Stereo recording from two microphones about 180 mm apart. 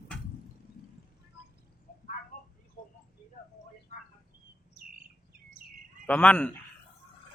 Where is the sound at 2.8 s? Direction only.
50° left (ahead or behind).